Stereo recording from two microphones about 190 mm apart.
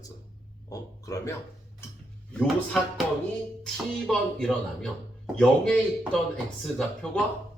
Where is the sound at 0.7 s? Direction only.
15° left (ahead or behind).